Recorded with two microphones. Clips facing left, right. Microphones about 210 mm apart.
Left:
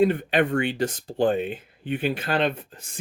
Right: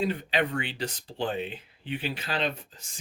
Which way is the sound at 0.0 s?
55° left (ahead or behind).